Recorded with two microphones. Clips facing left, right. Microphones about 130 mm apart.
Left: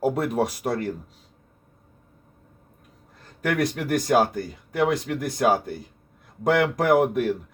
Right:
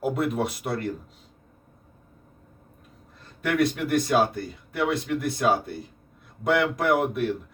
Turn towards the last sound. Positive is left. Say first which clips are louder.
# left 3 dB
turn(degrees=45)  # may be behind; listen again after turning